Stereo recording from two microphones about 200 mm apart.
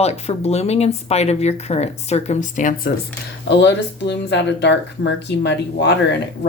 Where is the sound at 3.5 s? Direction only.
60° left (ahead or behind).